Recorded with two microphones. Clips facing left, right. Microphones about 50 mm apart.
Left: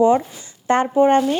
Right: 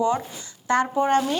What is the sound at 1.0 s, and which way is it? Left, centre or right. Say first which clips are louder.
Speech: left 5 dB; centre.